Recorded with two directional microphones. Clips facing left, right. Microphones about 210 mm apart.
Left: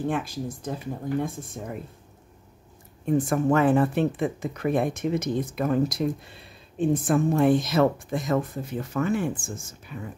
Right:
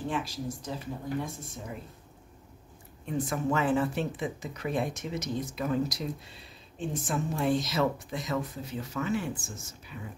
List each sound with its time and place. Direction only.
0.1 s speech: 55° left (ahead or behind)
3.1 s speech: 50° left (ahead or behind)